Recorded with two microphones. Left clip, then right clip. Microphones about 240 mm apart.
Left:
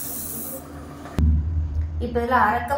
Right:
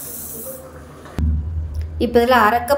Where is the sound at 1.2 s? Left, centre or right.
Centre.